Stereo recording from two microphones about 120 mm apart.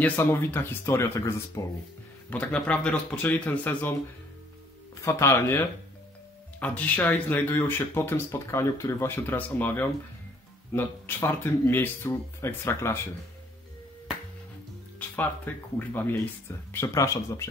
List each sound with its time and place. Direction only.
0.0 s speech: 15° left (ahead or behind)
2.2 s speech: 10° left (ahead or behind)
5.0 s speech: 25° left (ahead or behind)
15.0 s speech: 15° left (ahead or behind)